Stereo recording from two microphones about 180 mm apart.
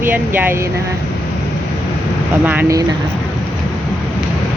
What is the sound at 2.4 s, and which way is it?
Speech, 10° right (ahead or behind).